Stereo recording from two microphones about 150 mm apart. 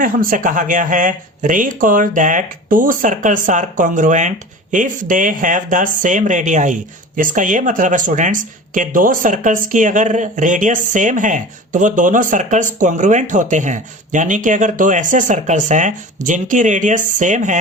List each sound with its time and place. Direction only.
0.0 s speech: 65° right (ahead or behind)